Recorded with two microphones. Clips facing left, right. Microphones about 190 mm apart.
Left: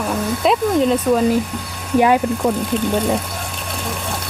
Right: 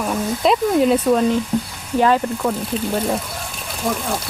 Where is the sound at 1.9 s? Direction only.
10° left (ahead or behind).